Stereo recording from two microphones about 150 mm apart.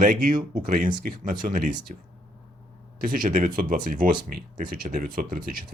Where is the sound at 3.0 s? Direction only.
70° right (ahead or behind).